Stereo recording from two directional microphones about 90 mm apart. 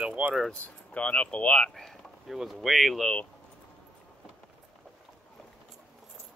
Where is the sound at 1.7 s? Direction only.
Centre (ahead or behind).